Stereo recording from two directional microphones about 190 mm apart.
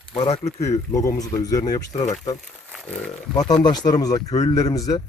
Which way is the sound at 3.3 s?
20° left (ahead or behind).